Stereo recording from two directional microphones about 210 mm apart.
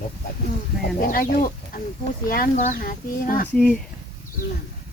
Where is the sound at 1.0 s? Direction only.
40° left (ahead or behind).